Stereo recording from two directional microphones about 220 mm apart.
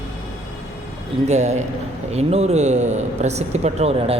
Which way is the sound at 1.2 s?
30° right (ahead or behind).